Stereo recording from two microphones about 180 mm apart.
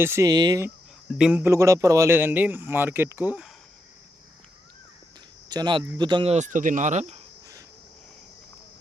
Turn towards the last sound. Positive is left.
turn(degrees=-40)  # may be behind; listen again after turning